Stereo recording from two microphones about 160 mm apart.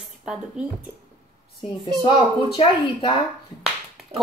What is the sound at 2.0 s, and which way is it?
Speech, 35° left (ahead or behind).